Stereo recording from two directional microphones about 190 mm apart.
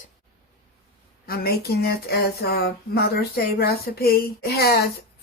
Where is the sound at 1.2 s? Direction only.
55° left (ahead or behind).